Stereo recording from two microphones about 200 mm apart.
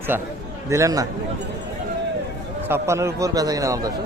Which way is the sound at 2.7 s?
15° right (ahead or behind).